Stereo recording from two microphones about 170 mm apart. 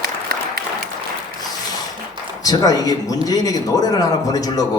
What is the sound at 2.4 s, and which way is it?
A man's voice, 20° left (ahead or behind).